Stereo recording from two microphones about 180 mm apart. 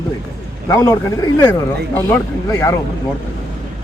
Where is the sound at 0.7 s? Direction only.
20° left (ahead or behind).